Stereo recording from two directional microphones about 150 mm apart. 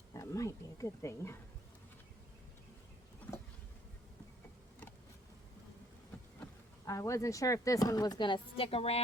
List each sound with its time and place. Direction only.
0.1 s speech: 20° left (ahead or behind)
6.8 s speech: 20° left (ahead or behind); by 9.0 s 40° left (ahead or behind)